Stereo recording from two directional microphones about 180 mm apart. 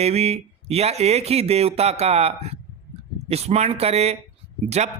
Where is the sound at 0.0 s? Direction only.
35° right (ahead or behind).